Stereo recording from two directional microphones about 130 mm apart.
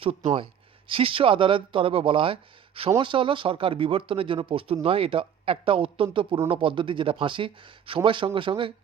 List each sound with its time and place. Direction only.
0.0 s speech: 50° right (ahead or behind)